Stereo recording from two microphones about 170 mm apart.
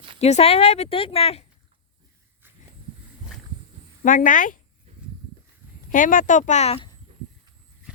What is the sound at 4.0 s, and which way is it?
Speech, 50° left (ahead or behind).